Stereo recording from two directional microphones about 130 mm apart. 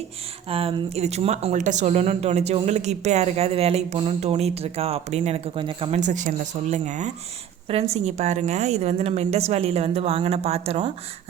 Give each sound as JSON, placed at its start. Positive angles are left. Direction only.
{"t": 0.4, "sound": "a woman's voice", "side_deg": -45}
{"t": 5.9, "sound": "speech", "side_deg": -70}
{"t": 7.7, "sound": "a woman's voice", "side_deg": -50}